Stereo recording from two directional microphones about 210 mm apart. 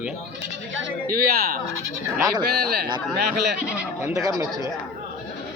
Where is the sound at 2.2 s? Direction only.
15° right (ahead or behind).